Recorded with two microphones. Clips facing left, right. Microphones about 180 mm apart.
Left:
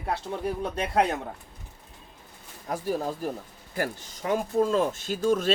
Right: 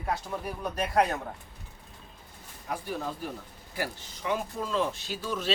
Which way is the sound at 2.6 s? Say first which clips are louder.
Left 5 dB; 45° left (ahead or behind).